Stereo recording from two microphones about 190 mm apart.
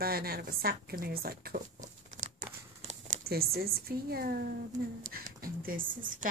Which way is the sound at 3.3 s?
55° right (ahead or behind).